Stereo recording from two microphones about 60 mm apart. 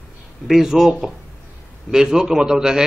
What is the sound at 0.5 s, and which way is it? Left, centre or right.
A man's voice, centre.